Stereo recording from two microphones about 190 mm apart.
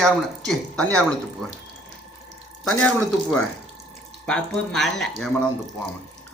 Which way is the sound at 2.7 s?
5° left (ahead or behind).